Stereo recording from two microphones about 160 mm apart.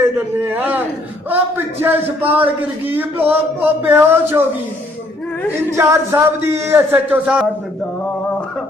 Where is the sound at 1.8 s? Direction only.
10° right (ahead or behind).